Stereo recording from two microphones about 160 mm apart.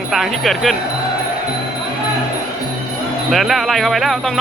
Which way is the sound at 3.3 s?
Centre (ahead or behind).